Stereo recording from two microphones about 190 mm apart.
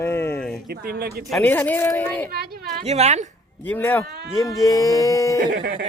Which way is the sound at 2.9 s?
35° right (ahead or behind).